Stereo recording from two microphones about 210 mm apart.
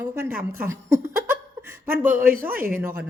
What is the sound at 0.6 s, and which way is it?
Laughter, 10° right (ahead or behind).